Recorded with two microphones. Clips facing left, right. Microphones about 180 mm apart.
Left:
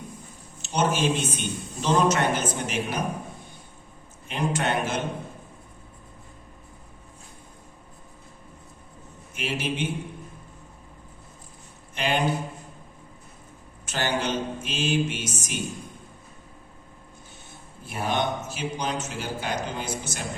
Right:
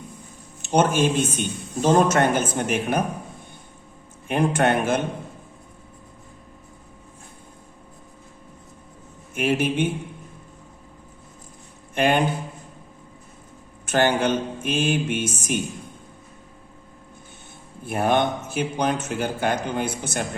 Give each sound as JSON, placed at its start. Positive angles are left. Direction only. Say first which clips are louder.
{"t": 0.6, "sound": "a man's voice", "louder": "right 5 dB", "side_deg": -50}
{"t": 4.3, "sound": "a man's voice", "louder": "right 6 dB", "side_deg": -55}
{"t": 9.3, "sound": "a man's voice", "louder": "right 8 dB", "side_deg": -50}
{"t": 11.9, "sound": "a man's voice", "louder": "right 6 dB", "side_deg": -55}
{"t": 13.8, "sound": "a man's voice", "louder": "right 7 dB", "side_deg": -55}
{"t": 17.8, "sound": "speech", "louder": "right 6 dB", "side_deg": -55}